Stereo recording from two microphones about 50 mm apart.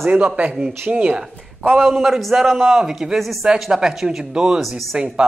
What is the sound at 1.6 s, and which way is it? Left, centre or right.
A man's voice, centre.